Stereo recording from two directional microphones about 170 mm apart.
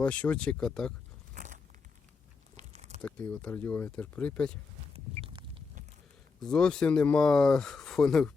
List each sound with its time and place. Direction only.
0.0 s speech: 10° left (ahead or behind)
1.3 s a sound: 50° right (ahead or behind)
2.6 s crumpling: 40° right (ahead or behind)
3.0 s speech: 5° left (ahead or behind)
4.9 s a sound: 35° right (ahead or behind)
6.4 s speech: 5° left (ahead or behind)